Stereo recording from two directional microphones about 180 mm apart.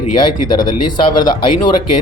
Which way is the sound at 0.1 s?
25° left (ahead or behind).